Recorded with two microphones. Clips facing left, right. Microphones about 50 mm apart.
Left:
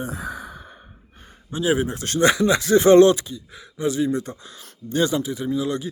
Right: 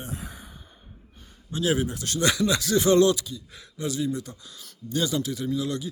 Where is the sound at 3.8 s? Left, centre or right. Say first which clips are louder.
Left 6 dB; left.